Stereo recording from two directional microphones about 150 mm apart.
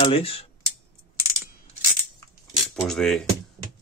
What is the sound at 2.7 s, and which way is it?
Speech, centre (ahead or behind).